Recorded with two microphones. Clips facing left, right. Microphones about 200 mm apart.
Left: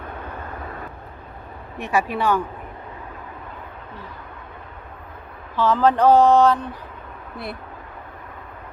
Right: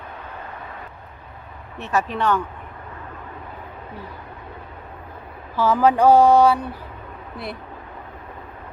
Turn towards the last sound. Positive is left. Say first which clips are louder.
# even
turn(degrees=0)  # may be behind; listen again after turning